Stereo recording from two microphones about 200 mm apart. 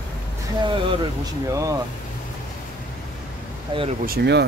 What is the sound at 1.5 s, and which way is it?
Speech, 15° right (ahead or behind).